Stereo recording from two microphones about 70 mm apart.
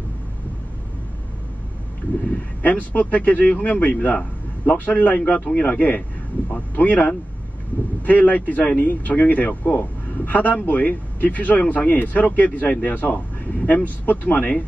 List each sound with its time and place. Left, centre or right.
2.3 s speech: left